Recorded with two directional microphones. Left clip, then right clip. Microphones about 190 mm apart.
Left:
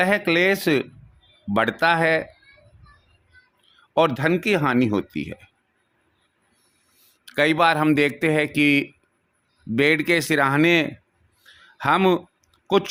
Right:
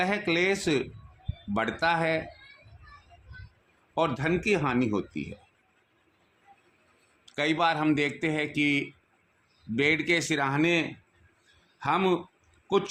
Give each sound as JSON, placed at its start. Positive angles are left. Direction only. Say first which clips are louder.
{"t": 0.0, "sound": "a man's voice", "louder": "left 7 dB", "side_deg": 45}
{"t": 3.9, "sound": "a man's voice", "louder": "left 8 dB", "side_deg": 50}
{"t": 7.3, "sound": "a man's voice", "louder": "left 8 dB", "side_deg": 45}